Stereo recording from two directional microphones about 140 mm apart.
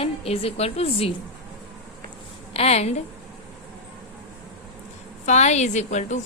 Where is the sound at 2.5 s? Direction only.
45° left (ahead or behind).